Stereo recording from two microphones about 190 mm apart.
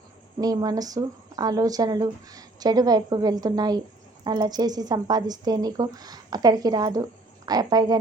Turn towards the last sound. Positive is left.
turn(degrees=-20)  # may be behind; listen again after turning